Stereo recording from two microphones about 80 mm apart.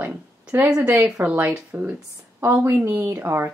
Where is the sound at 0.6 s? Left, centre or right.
Centre.